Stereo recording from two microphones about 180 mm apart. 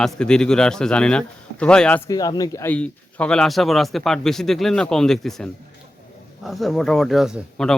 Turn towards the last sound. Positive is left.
turn(degrees=0)  # may be behind; listen again after turning